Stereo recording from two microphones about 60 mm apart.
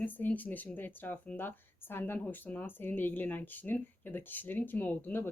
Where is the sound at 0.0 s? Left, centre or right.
Left.